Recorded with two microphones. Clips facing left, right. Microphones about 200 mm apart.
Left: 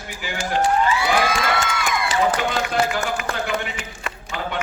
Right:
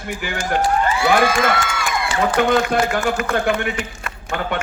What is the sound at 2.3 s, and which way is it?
A man's voice, 55° right (ahead or behind).